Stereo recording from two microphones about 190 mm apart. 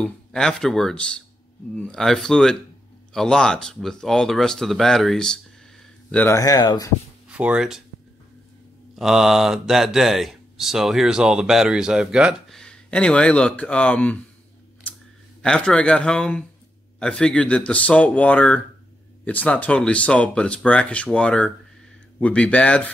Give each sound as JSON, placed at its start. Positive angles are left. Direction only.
{"t": 0.0, "sound": "speech", "side_deg": 5}
{"t": 6.1, "sound": "speech", "side_deg": 15}
{"t": 7.2, "sound": "speech", "side_deg": -5}
{"t": 8.9, "sound": "speech", "side_deg": 0}
{"t": 15.4, "sound": "speech", "side_deg": 5}